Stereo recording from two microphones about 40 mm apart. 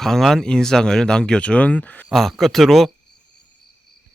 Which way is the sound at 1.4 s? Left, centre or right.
Left.